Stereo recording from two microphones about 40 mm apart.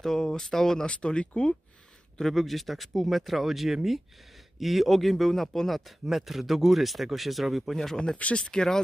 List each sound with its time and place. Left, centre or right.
0.0 s speech: centre
0.8 s speech: left
2.1 s speech: centre
6.0 s speech: centre
8.4 s speech: centre